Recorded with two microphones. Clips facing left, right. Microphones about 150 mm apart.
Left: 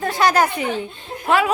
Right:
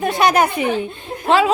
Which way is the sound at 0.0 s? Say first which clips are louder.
Right 2 dB; 20° right (ahead or behind).